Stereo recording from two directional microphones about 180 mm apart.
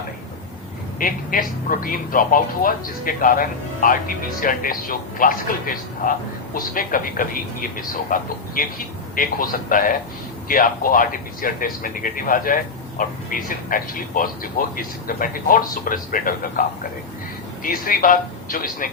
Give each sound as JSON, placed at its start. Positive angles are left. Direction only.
{"t": 0.9, "sound": "speech", "side_deg": 50}